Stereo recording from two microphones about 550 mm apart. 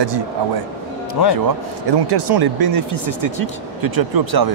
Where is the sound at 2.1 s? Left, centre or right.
Right.